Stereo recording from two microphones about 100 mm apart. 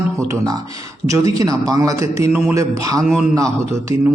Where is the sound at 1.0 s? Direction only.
35° right (ahead or behind).